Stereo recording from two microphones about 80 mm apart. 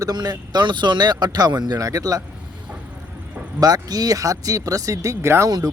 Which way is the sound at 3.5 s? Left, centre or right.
Right.